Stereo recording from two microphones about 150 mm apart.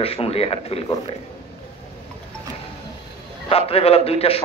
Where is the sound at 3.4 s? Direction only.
40° left (ahead or behind).